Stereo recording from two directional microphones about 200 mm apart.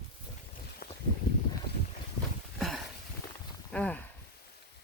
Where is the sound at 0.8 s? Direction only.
50° left (ahead or behind).